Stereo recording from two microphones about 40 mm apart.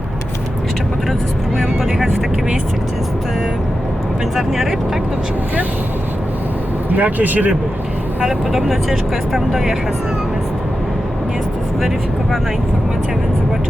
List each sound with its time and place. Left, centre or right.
1.5 s vehicle: centre
4.4 s speech: centre
6.9 s speech: right
8.7 s speech: centre